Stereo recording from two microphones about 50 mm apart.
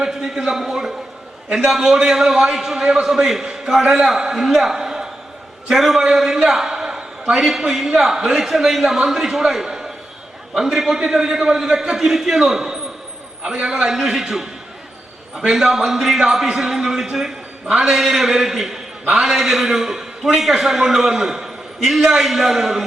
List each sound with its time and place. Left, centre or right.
0.0 s a man's voice: centre